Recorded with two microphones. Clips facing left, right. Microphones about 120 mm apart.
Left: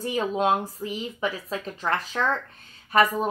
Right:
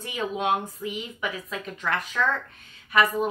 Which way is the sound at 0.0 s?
35° left (ahead or behind).